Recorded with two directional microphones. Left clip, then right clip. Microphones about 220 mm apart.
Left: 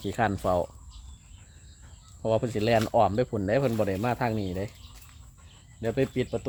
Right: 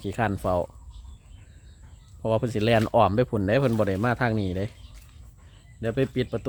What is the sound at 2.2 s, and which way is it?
Speech, 15° right (ahead or behind).